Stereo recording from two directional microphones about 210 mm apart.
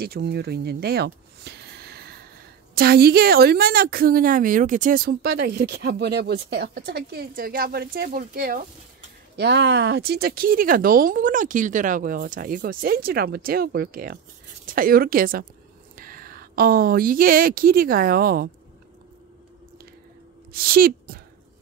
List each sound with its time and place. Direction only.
0.0 s speech: 50° right (ahead or behind)
9.4 s speech: 55° right (ahead or behind)
20.5 s speech: 45° right (ahead or behind)